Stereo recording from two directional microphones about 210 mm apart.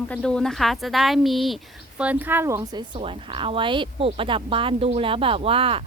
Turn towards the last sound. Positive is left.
turn(degrees=-25)  # may be behind; listen again after turning